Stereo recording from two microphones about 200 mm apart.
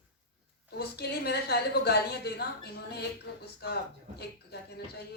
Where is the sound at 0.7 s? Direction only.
50° left (ahead or behind).